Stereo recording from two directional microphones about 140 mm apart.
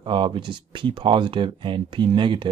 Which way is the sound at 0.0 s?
35° right (ahead or behind).